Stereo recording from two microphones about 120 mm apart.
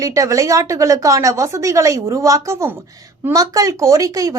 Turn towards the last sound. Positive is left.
turn(degrees=-30)  # may be behind; listen again after turning